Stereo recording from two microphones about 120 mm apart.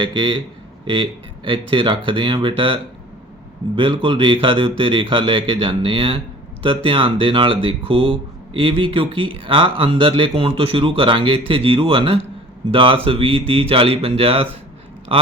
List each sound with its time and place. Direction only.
0.0 s speech: 40° right (ahead or behind)
1.5 s speech: 45° right (ahead or behind)
3.8 s a man's voice: 45° right (ahead or behind)